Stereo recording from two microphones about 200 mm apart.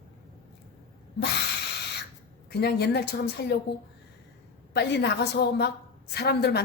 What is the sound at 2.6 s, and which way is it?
Speech, 55° left (ahead or behind).